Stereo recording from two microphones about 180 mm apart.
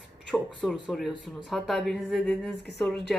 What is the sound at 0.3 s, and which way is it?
Speech, centre (ahead or behind).